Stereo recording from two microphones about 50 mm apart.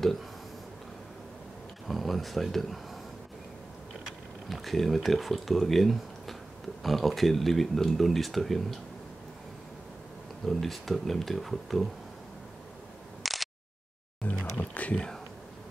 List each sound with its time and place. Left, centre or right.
1.9 s speech: centre
4.0 s speech: centre
10.4 s speech: centre
13.2 s a sound: centre
14.2 s music: left